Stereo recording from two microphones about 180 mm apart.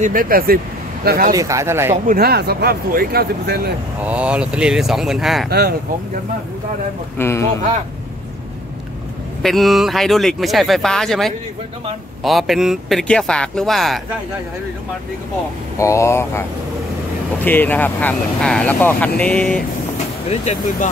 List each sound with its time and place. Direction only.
0.0 s speech: 50° right (ahead or behind)
1.3 s speech: 15° right (ahead or behind)
2.0 s speech: 60° right (ahead or behind)
4.0 s speech: 5° right (ahead or behind)
5.5 s speech: 60° right (ahead or behind)
7.2 s speech: 15° left (ahead or behind)
9.4 s speech: centre (ahead or behind)
15.8 s speech: 15° left (ahead or behind)
17.5 s speech: 10° left (ahead or behind)
20.2 s speech: 40° left (ahead or behind)